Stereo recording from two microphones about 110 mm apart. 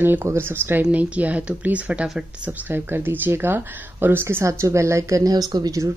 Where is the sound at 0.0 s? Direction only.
20° right (ahead or behind).